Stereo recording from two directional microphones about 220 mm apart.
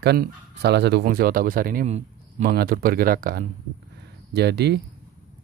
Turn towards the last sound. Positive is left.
turn(degrees=-50)  # may be behind; listen again after turning